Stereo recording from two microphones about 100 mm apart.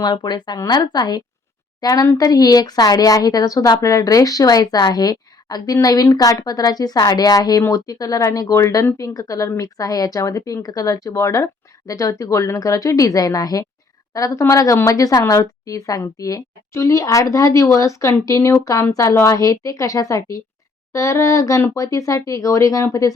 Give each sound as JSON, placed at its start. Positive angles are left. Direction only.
{"t": 0.0, "sound": "a woman's voice", "side_deg": 45}